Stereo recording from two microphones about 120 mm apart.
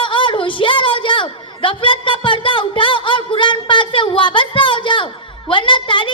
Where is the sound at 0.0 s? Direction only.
45° left (ahead or behind).